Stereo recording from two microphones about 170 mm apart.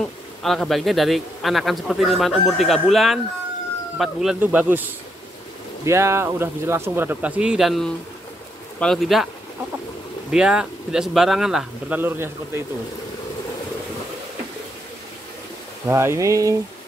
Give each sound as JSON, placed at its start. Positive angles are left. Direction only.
{"t": 0.4, "sound": "a man's voice", "side_deg": 0}
{"t": 10.3, "sound": "a man's voice", "side_deg": -5}
{"t": 15.9, "sound": "speech", "side_deg": -15}